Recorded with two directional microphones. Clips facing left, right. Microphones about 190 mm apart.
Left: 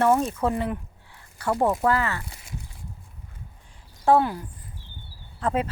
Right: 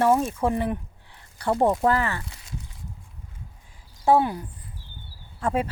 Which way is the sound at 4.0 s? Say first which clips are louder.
Even; 15° right (ahead or behind).